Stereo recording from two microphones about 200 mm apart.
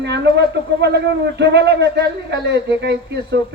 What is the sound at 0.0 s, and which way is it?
Speech, 60° right (ahead or behind).